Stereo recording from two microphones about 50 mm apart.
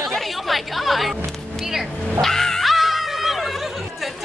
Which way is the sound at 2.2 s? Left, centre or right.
Centre.